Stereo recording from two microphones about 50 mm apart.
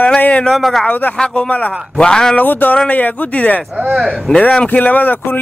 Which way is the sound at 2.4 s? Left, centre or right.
Left.